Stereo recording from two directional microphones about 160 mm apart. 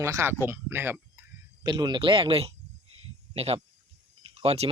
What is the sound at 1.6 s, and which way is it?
Speech, 25° right (ahead or behind).